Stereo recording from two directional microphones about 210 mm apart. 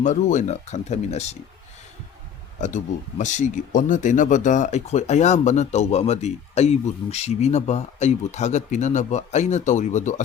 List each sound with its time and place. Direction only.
0.0 s speech: 35° left (ahead or behind)
2.6 s speech: 35° left (ahead or behind)